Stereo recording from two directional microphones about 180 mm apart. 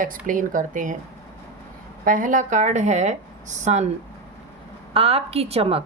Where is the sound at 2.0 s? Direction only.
50° right (ahead or behind).